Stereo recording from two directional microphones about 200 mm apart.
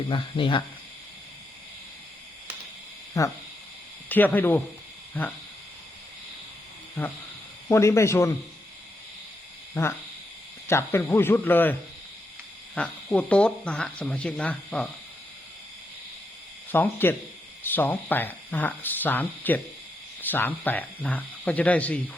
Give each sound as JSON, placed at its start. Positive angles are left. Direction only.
{"t": 0.1, "sound": "speech", "side_deg": 25}
{"t": 3.2, "sound": "speech", "side_deg": 15}
{"t": 7.7, "sound": "speech", "side_deg": 15}
{"t": 9.7, "sound": "speech", "side_deg": 10}
{"t": 16.7, "sound": "speech", "side_deg": 10}